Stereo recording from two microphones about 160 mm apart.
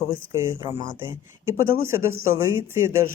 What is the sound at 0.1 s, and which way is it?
Speech, 15° right (ahead or behind).